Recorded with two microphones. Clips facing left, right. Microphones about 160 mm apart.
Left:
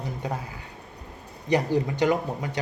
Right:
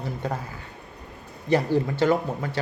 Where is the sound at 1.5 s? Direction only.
15° left (ahead or behind).